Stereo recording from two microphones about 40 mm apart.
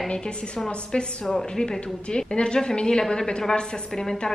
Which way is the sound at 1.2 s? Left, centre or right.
Centre.